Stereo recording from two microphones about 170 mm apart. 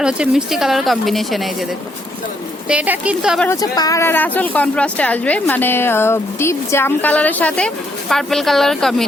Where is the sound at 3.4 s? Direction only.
20° left (ahead or behind).